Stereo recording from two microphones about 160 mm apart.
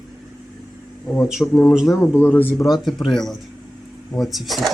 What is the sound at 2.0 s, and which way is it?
Speech, 15° left (ahead or behind).